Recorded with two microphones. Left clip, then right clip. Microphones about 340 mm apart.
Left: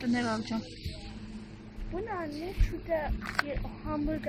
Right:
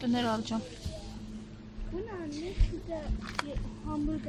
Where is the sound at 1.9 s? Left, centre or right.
Left.